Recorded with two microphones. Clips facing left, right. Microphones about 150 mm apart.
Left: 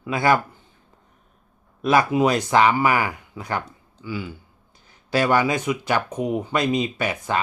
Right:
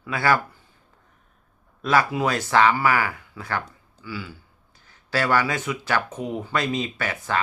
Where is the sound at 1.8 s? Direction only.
15° left (ahead or behind).